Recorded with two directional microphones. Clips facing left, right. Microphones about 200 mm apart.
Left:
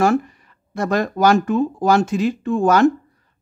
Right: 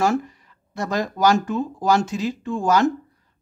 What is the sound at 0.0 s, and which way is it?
Speech, 55° left (ahead or behind).